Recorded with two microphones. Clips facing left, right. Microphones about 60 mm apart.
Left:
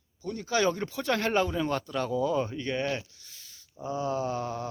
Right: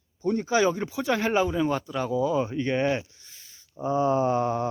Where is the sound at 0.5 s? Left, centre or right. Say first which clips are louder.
Right 1 dB; centre.